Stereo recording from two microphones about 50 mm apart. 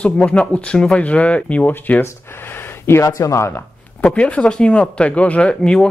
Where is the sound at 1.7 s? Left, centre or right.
Left.